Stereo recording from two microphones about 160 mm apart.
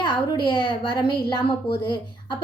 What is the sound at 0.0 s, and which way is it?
A woman's voice, 30° left (ahead or behind).